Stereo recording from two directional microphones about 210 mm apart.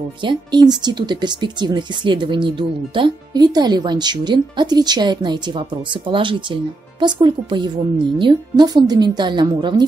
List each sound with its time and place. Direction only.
0.2 s speech: 20° right (ahead or behind)